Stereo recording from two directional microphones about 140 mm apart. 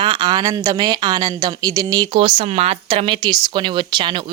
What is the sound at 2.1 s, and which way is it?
Speech, 40° right (ahead or behind).